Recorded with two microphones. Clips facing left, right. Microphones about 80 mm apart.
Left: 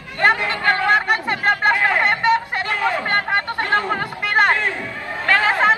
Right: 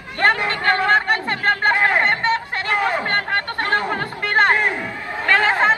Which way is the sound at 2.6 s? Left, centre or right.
Right.